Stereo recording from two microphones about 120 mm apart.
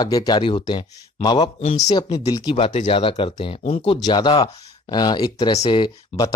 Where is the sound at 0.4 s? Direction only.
45° left (ahead or behind).